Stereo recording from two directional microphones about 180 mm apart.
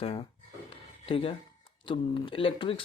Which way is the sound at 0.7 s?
30° left (ahead or behind).